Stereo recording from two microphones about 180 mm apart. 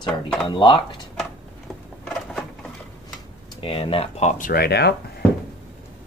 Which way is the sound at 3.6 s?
30° left (ahead or behind).